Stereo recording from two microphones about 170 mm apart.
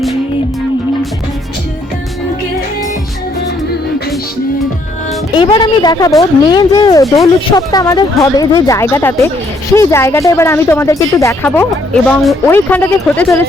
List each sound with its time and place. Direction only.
5.3 s a woman's voice: 30° left (ahead or behind)
12.0 s speech: centre (ahead or behind)
12.5 s speech: 10° left (ahead or behind)